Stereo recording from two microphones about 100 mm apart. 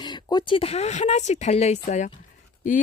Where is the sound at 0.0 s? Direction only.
45° left (ahead or behind); by 2.1 s 90° left.